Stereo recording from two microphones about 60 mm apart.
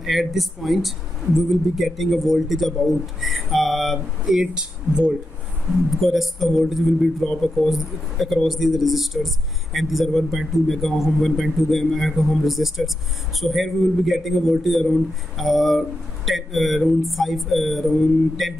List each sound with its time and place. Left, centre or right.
0.0 s speech: centre
4.4 s speech: centre
5.9 s speech: centre